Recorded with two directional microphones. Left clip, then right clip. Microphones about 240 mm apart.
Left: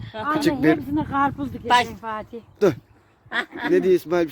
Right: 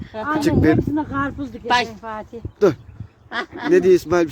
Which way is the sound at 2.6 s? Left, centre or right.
Centre.